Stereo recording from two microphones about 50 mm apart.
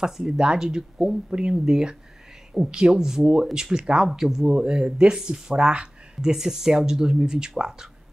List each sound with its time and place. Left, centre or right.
0.0 s speech: centre